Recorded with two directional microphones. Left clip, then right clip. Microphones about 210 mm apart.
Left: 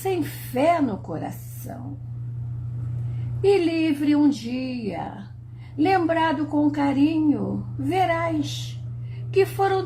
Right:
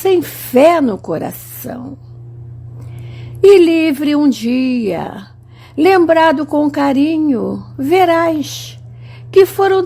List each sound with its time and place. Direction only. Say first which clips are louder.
0.0 s a woman's voice: right 12 dB; 45° right (ahead or behind)
3.5 s speech: right 11 dB; 45° right (ahead or behind)